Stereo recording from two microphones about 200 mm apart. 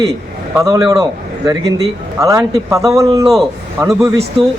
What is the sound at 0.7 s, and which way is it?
Speech, 15° right (ahead or behind).